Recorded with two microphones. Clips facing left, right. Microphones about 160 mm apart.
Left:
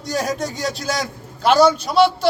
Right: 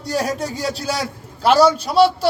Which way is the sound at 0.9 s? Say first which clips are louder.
Even; 35° right (ahead or behind).